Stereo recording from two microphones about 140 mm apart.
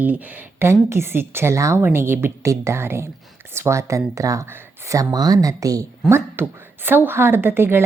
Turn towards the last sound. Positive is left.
turn(degrees=-15)  # may be behind; listen again after turning